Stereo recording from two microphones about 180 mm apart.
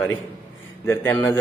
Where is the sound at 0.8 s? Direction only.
10° left (ahead or behind).